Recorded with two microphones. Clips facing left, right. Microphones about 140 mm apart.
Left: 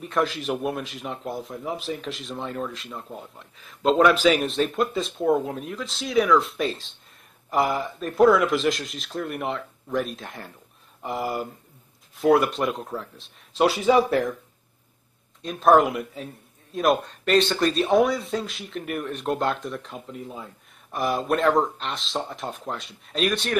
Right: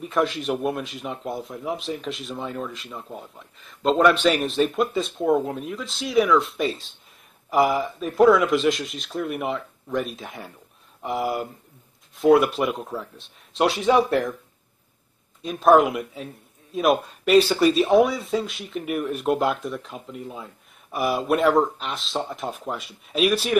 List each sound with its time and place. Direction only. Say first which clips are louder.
0.0 s speech: right 2 dB; centre (ahead or behind)
15.4 s speech: right 1 dB; centre (ahead or behind)